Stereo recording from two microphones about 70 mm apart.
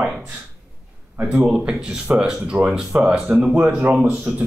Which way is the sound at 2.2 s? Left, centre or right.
Centre.